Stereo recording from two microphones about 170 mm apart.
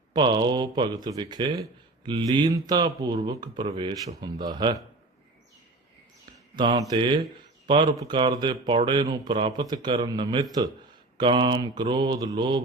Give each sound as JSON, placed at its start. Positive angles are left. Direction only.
{"t": 0.1, "sound": "speech", "side_deg": -25}
{"t": 6.6, "sound": "speech", "side_deg": -25}